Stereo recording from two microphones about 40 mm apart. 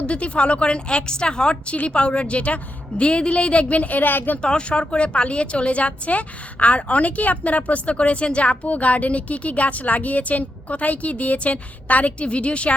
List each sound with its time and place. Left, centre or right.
0.0 s a woman's voice: left
1.7 s a woman's voice: left
4.4 s a woman's voice: left